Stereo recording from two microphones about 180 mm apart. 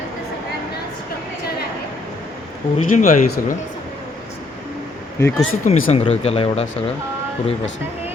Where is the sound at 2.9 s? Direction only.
40° left (ahead or behind).